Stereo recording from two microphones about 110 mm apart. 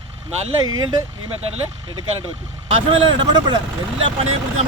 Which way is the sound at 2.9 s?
50° right (ahead or behind).